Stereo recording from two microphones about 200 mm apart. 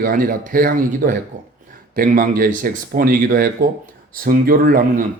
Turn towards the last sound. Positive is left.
turn(degrees=-45)  # may be behind; listen again after turning